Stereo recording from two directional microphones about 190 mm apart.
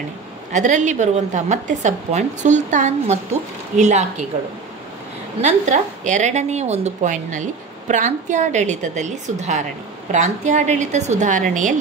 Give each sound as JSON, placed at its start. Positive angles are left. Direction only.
{"t": 0.5, "sound": "a woman's voice", "side_deg": -40}
{"t": 5.4, "sound": "a woman's voice", "side_deg": -40}